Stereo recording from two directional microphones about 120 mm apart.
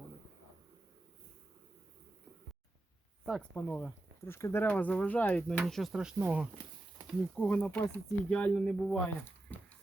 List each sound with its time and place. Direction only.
3.5 s speech: 15° left (ahead or behind)
5.6 s speech: centre (ahead or behind)
6.1 s speech: 20° right (ahead or behind)
7.3 s speech: 10° left (ahead or behind)